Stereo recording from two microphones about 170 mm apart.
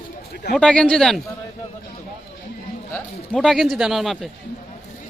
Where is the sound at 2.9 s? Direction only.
5° left (ahead or behind).